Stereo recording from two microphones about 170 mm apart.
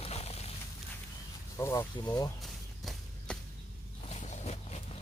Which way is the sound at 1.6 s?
15° left (ahead or behind).